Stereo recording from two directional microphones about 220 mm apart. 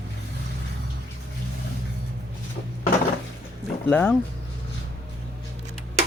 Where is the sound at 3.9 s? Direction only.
5° left (ahead or behind).